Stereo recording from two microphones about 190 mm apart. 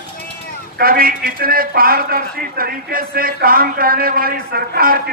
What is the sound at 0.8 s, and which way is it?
A man's voice, 50° right (ahead or behind).